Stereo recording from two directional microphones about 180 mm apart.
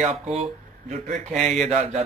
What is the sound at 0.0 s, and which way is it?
Speech, 35° right (ahead or behind).